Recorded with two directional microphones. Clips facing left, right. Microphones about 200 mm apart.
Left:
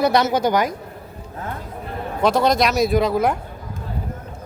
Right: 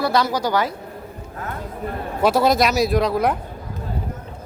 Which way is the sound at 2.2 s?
5° right (ahead or behind).